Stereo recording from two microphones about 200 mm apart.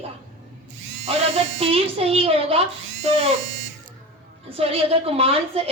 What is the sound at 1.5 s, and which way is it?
Speech, 30° right (ahead or behind).